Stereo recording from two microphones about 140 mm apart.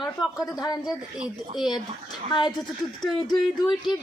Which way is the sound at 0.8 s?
5° right (ahead or behind).